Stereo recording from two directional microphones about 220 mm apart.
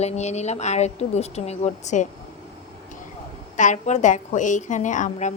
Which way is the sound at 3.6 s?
35° left (ahead or behind).